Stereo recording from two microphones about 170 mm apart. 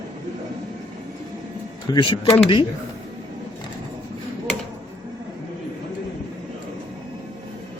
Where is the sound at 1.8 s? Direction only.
25° left (ahead or behind).